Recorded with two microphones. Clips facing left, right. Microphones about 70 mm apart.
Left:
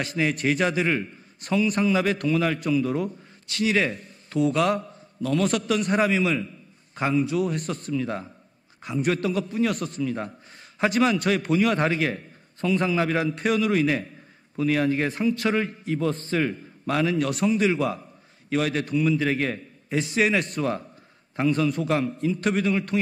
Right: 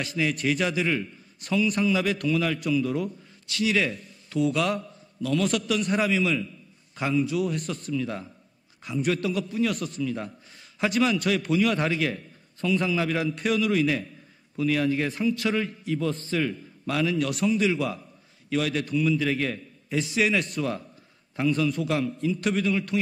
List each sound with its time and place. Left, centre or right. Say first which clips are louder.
0.0 s a man's voice: left 2 dB; left